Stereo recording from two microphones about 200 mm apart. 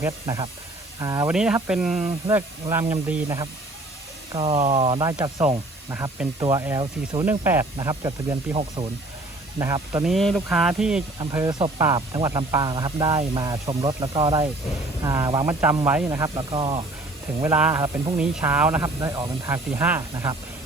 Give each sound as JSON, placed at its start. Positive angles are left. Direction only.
{"t": 0.0, "sound": "speech", "side_deg": -15}
{"t": 1.3, "sound": "speech", "side_deg": -5}
{"t": 4.3, "sound": "speech", "side_deg": -25}
{"t": 5.9, "sound": "speech", "side_deg": -10}
{"t": 7.3, "sound": "speech", "side_deg": -10}
{"t": 10.0, "sound": "speech", "side_deg": 0}
{"t": 11.2, "sound": "speech", "side_deg": -15}
{"t": 17.4, "sound": "speech", "side_deg": -10}